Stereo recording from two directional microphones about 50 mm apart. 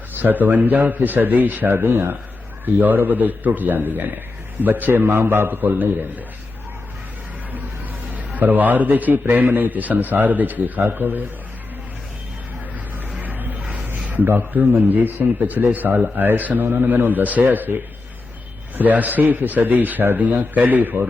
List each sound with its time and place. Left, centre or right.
0.2 s a man's voice: right
1.7 s a man's voice: right
5.0 s a man's voice: right
8.1 s a man's voice: right
13.2 s a sound: right
14.3 s a man's voice: right
18.8 s a man's voice: right